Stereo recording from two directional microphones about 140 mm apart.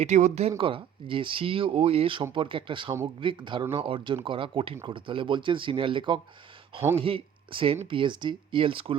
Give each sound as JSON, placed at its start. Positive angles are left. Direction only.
{"t": 0.0, "sound": "speech", "side_deg": -55}
{"t": 0.6, "sound": "speech", "side_deg": -40}